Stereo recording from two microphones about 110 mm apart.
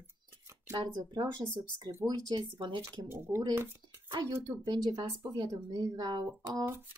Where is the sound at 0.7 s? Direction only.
40° right (ahead or behind).